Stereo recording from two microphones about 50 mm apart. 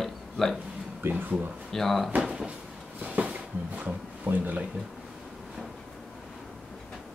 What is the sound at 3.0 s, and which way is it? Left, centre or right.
Speech, right.